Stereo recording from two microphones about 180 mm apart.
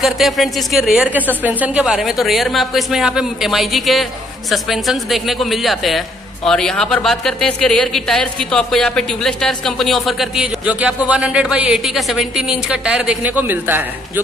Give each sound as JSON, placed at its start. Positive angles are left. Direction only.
{"t": 0.0, "sound": "a woman's voice", "side_deg": 0}